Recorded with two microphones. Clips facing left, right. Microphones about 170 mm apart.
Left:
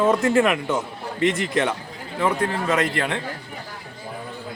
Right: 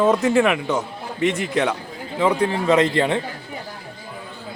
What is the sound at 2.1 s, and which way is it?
Speech, 20° right (ahead or behind).